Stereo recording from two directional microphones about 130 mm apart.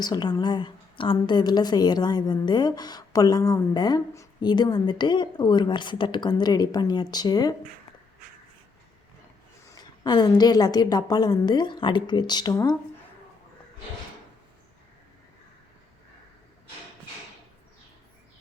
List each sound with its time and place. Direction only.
0.0 s a woman's voice: 30° left (ahead or behind)
10.0 s a woman's voice: 30° left (ahead or behind)